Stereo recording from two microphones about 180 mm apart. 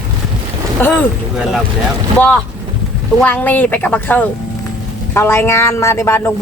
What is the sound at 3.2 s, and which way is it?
Speech, 10° left (ahead or behind).